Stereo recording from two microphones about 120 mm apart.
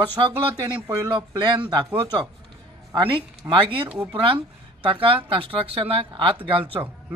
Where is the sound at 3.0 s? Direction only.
45° right (ahead or behind).